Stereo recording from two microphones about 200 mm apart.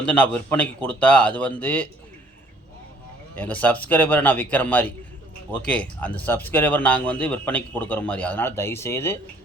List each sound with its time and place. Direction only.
0.0 s speech: 5° left (ahead or behind)
3.3 s speech: 10° left (ahead or behind)